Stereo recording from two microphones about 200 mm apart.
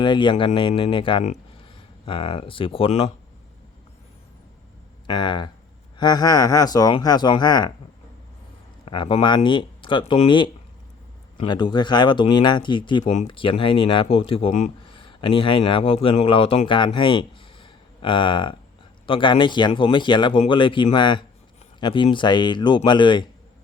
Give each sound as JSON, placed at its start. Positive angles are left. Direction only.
{"t": 0.0, "sound": "speech", "side_deg": 25}
{"t": 5.0, "sound": "speech", "side_deg": 20}
{"t": 8.8, "sound": "speech", "side_deg": 25}